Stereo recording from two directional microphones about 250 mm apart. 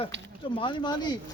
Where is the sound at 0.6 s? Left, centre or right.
Centre.